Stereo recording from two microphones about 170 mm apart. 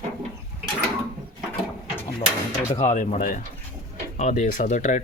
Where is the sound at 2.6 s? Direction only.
40° left (ahead or behind).